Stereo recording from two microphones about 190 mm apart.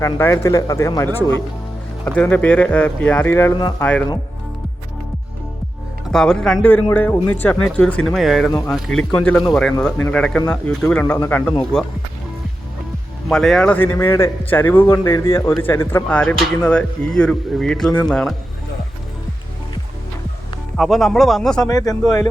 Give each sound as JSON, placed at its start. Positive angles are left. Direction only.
{"t": 0.0, "sound": "a man's voice", "side_deg": 15}
{"t": 3.8, "sound": "a man's voice", "side_deg": 5}
{"t": 6.1, "sound": "a man's voice", "side_deg": 5}
{"t": 13.2, "sound": "a man's voice", "side_deg": 0}
{"t": 20.7, "sound": "speech", "side_deg": 0}
{"t": 21.7, "sound": "speech", "side_deg": 20}